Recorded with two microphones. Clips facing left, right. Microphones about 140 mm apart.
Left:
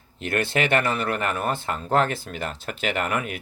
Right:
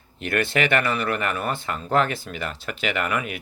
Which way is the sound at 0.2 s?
50° right (ahead or behind).